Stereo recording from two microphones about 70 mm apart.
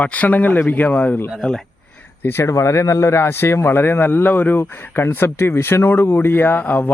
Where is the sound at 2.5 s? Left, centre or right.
Left.